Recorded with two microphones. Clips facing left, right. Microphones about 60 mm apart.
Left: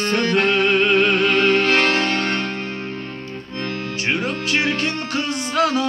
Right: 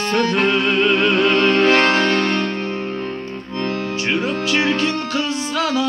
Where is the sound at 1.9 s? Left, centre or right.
Right.